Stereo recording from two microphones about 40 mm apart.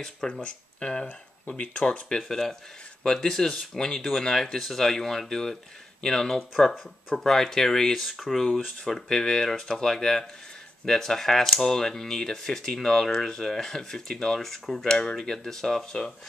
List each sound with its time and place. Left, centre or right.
0.3 s speech: left
2.2 s speech: centre
8.8 s speech: centre
14.9 s speech: left
15.1 s speech: centre